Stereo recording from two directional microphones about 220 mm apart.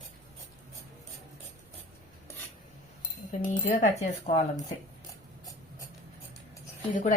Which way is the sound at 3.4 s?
35° left (ahead or behind).